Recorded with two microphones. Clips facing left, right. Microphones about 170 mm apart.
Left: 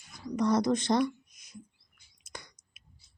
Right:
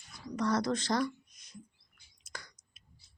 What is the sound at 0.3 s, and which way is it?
Speech, 20° left (ahead or behind).